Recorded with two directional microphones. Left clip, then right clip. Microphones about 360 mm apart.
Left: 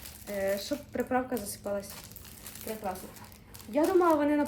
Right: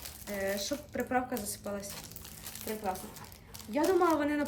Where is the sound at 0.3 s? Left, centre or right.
Centre.